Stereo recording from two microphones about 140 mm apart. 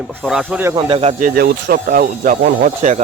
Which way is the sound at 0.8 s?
40° right (ahead or behind).